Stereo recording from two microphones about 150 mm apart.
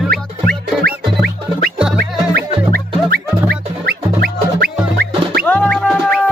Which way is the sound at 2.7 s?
90° right.